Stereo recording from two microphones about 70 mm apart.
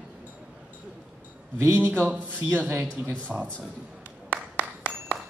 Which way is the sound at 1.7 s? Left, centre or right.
Right.